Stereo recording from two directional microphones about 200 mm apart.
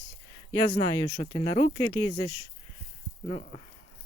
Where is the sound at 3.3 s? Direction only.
35° left (ahead or behind).